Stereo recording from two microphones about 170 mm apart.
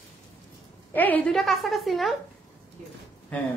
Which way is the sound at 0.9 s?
10° left (ahead or behind).